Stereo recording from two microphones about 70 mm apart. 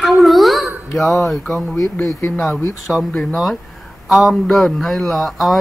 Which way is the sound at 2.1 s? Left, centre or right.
Left.